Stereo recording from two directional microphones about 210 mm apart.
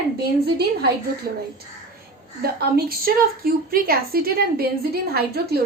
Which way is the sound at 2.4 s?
45° right (ahead or behind).